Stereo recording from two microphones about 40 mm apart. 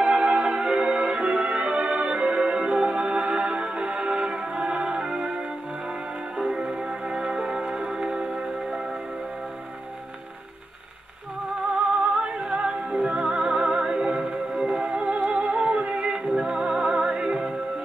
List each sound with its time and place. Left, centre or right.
0.0 s music: centre
6.3 s music: centre
6.6 s music: right
11.7 s music: right